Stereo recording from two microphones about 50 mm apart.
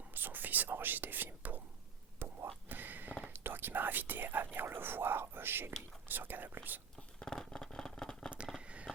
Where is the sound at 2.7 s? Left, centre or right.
Right.